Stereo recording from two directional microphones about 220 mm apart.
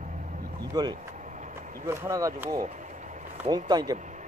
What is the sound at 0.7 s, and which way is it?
Speech, 20° right (ahead or behind).